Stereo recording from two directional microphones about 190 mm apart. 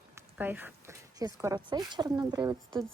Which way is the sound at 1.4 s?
20° right (ahead or behind).